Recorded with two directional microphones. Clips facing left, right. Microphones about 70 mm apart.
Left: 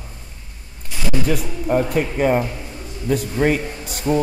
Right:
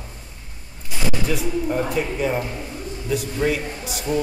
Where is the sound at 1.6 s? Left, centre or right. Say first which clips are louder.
Left 7 dB; left.